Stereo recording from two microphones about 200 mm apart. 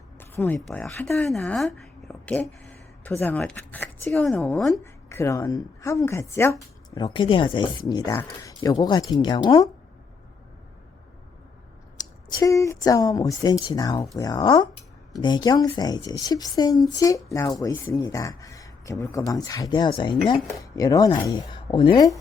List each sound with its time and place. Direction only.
0.2 s a woman's voice: 10° left (ahead or behind)
4.8 s a woman's voice: 15° left (ahead or behind)
11.9 s a woman's voice: 15° left (ahead or behind)